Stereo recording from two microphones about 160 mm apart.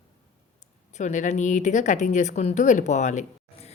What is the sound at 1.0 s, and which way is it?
Speech, 50° left (ahead or behind).